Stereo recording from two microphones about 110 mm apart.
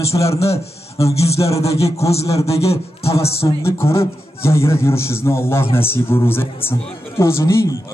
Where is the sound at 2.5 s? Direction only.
65° left (ahead or behind).